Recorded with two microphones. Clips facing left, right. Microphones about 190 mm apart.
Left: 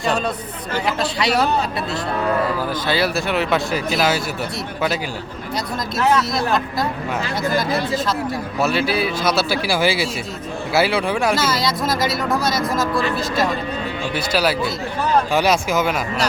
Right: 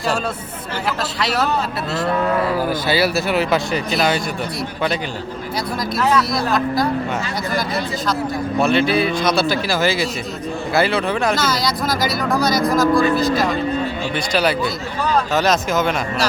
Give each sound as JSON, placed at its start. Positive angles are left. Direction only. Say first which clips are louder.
{"t": 0.9, "sound": "speech", "louder": "left 2 dB", "side_deg": 0}
{"t": 2.6, "sound": "speech", "louder": "right 2 dB", "side_deg": -10}
{"t": 6.0, "sound": "speech", "louder": "even", "side_deg": 20}
{"t": 8.5, "sound": "speech", "louder": "right 4 dB", "side_deg": 5}
{"t": 11.9, "sound": "speech", "louder": "right 1 dB", "side_deg": 25}
{"t": 14.3, "sound": "speech", "louder": "right 1 dB", "side_deg": 5}